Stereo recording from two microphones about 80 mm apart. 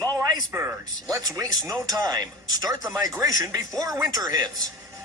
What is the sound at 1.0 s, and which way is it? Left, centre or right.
Speech, right.